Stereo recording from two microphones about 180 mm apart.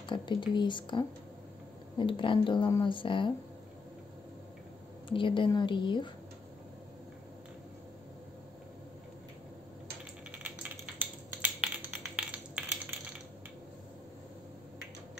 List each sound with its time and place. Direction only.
0.0 s speech: 25° left (ahead or behind)
5.1 s speech: 30° left (ahead or behind)
10.3 s typewriter: 10° right (ahead or behind)
11.6 s typing: 5° right (ahead or behind)